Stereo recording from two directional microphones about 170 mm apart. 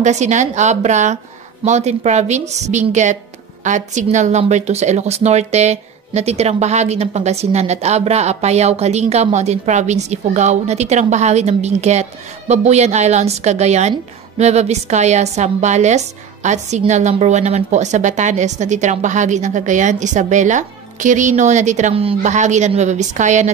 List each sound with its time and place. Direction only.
0.0 s a woman's voice: 45° right (ahead or behind)